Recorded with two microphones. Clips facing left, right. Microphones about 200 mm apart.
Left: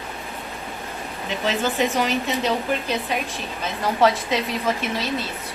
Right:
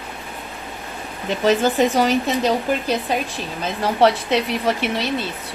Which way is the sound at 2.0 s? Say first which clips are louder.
Right 5 dB; 35° right (ahead or behind).